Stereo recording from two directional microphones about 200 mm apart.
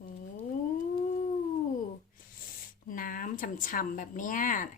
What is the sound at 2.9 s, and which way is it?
Speech, 45° left (ahead or behind).